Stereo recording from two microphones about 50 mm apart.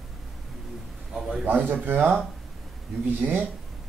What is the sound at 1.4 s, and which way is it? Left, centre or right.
Speech, right.